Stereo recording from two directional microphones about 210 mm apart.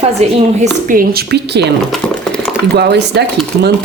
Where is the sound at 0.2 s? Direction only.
35° right (ahead or behind); by 1.7 s 50° right (ahead or behind).